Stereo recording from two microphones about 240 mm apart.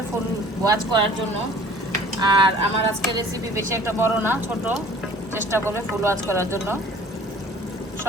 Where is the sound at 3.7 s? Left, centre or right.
Centre.